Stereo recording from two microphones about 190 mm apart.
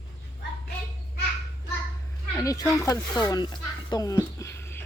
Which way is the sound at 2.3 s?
15° left (ahead or behind).